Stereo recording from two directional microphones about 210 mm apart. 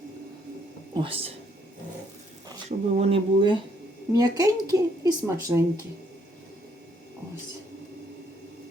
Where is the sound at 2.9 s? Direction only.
25° right (ahead or behind).